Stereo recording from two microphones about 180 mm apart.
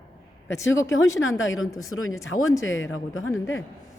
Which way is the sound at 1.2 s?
90° left.